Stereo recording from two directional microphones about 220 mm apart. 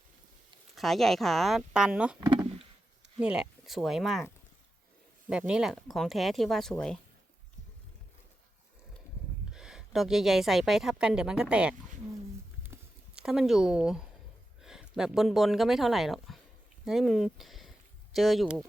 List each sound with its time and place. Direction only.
0.8 s speech: centre (ahead or behind)
2.3 s a sound: 20° right (ahead or behind)
3.2 s speech: 5° right (ahead or behind)
5.3 s speech: 5° right (ahead or behind)
9.5 s speech: 5° right (ahead or behind)
12.7 s a sound: 5° right (ahead or behind)
14.6 s speech: centre (ahead or behind)